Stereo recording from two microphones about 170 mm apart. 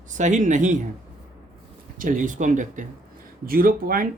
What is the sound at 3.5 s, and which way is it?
Speech, 60° right (ahead or behind).